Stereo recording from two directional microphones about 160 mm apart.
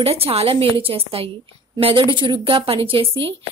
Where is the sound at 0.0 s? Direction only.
40° right (ahead or behind).